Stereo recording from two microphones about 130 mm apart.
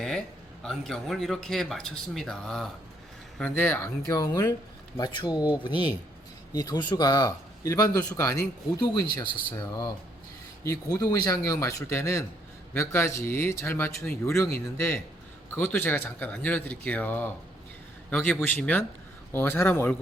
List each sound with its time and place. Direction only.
0.6 s speech: 5° left (ahead or behind)
3.5 s speech: 15° left (ahead or behind)
8.8 s speech: 35° left (ahead or behind); by 20.0 s 15° left (ahead or behind)